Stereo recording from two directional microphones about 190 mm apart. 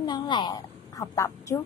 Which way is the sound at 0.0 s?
25° left (ahead or behind).